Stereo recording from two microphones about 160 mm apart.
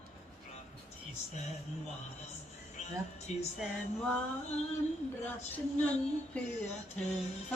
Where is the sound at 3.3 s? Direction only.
45° left (ahead or behind).